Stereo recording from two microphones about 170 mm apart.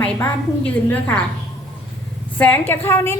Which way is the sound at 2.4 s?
10° left (ahead or behind).